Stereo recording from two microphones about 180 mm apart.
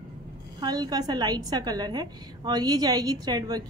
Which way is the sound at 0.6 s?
25° right (ahead or behind).